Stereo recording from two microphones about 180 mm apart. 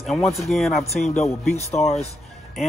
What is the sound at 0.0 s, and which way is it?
Speech, centre (ahead or behind).